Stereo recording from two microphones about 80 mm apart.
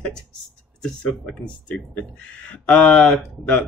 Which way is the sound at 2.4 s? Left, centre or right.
Centre.